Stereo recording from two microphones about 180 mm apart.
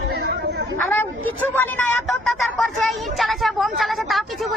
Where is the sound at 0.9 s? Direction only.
10° left (ahead or behind).